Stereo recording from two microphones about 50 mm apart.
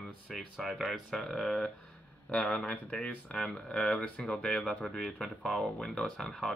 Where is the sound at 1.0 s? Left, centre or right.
Centre.